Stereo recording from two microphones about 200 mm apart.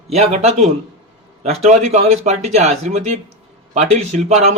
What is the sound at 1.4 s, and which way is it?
Speech, 30° right (ahead or behind).